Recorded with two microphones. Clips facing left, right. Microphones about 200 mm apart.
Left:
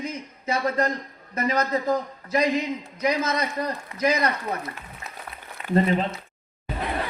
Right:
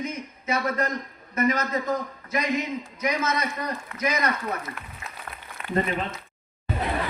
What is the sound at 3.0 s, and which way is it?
A man's voice, 30° left (ahead or behind).